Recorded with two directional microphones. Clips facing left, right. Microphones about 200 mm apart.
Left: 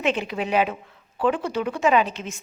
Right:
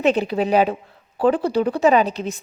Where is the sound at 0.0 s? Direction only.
40° right (ahead or behind).